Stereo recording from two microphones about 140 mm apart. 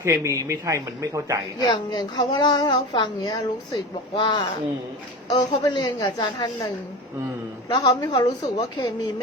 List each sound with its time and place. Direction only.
0.0 s speech: 20° right (ahead or behind)
1.6 s a woman's voice: 30° left (ahead or behind)
7.7 s a woman's voice: 30° left (ahead or behind)